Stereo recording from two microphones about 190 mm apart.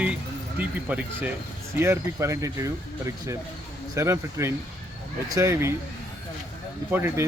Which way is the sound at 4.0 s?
15° right (ahead or behind).